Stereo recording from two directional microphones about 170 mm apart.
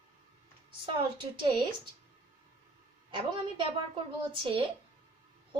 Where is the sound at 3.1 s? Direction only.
30° right (ahead or behind).